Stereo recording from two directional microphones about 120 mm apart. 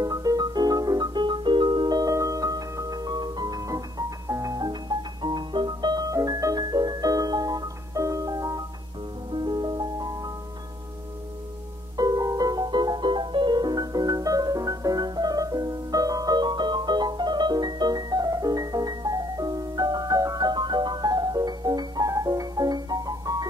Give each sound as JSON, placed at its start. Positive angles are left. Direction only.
{"t": 0.0, "sound": "music", "side_deg": -30}
{"t": 12.0, "sound": "music", "side_deg": -30}